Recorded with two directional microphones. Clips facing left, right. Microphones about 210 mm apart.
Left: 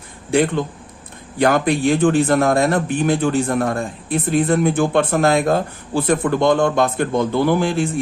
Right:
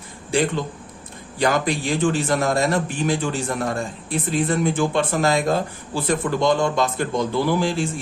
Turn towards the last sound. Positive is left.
turn(degrees=55)  # may be behind; listen again after turning